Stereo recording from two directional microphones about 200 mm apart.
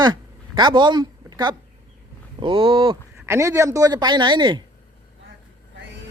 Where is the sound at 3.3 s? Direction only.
15° right (ahead or behind).